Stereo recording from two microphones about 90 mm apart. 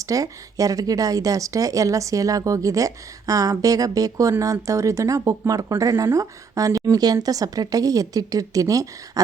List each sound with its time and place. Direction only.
0.0 s speech: 40° right (ahead or behind)